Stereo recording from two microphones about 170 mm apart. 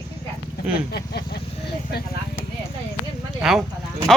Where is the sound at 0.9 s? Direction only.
70° left (ahead or behind).